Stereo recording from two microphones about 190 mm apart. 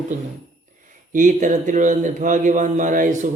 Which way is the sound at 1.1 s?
40° right (ahead or behind).